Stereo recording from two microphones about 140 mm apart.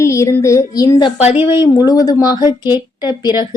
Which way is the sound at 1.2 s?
50° left (ahead or behind).